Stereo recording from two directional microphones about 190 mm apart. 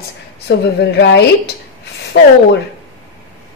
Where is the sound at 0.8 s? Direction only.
60° left (ahead or behind).